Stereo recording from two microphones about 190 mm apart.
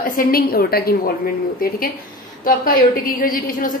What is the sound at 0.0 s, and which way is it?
A woman's voice, 45° left (ahead or behind).